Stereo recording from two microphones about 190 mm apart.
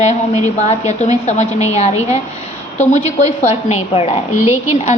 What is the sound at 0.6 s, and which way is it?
A woman's voice, 35° left (ahead or behind).